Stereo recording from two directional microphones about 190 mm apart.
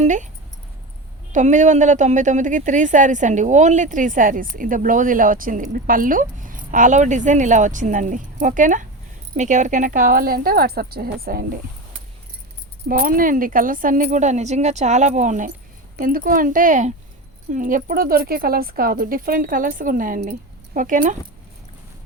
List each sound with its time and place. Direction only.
0.0 s speech: 40° right (ahead or behind)
1.3 s a woman's voice: 40° right (ahead or behind)
12.9 s speech: 50° right (ahead or behind)